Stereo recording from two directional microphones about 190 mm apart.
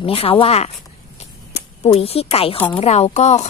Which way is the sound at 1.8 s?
30° left (ahead or behind).